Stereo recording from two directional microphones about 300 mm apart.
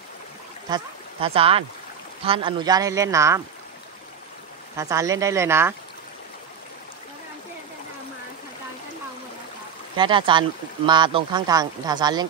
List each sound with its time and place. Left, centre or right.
0.7 s speech: centre
4.7 s speech: centre
9.9 s speech: centre